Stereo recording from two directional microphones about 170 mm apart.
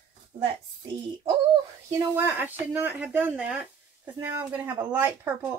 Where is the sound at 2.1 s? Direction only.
10° right (ahead or behind).